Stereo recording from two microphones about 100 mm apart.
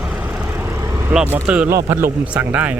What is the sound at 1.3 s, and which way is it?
A man's voice, 15° right (ahead or behind).